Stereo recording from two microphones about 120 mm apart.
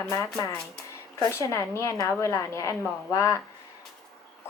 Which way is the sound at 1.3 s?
25° left (ahead or behind).